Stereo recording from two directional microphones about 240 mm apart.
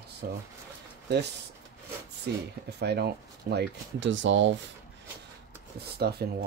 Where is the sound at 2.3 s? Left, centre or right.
Right.